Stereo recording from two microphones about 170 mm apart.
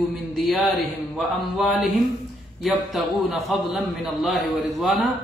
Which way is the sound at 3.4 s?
Centre (ahead or behind).